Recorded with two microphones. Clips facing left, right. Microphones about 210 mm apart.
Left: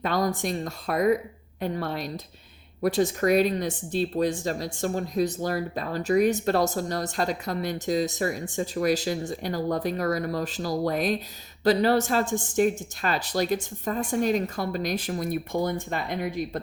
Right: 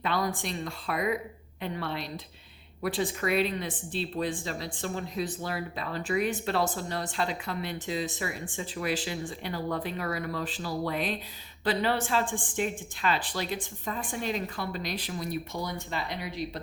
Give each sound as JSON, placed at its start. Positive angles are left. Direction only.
{"t": 0.0, "sound": "speech", "side_deg": 45}